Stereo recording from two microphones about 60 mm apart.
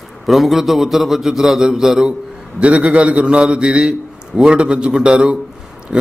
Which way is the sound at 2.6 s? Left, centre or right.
Centre.